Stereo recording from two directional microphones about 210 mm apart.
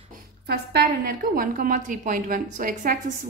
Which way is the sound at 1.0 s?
40° right (ahead or behind).